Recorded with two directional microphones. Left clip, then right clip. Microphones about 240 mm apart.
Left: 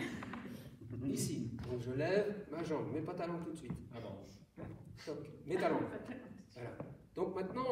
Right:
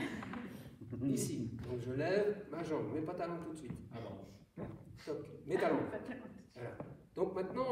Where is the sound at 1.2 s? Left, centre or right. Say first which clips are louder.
Right 1 dB; left.